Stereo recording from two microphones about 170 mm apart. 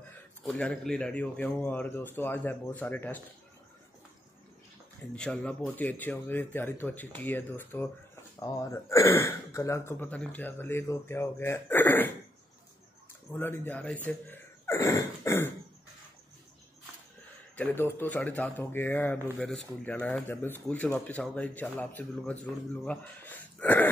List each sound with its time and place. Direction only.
0.5 s speech: 5° left (ahead or behind)
5.1 s speech: 5° left (ahead or behind)
13.4 s speech: 10° left (ahead or behind)
14.0 s a sound: 15° left (ahead or behind)
17.6 s speech: 15° left (ahead or behind)